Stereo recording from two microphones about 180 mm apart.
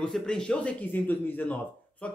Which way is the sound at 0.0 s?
5° left (ahead or behind).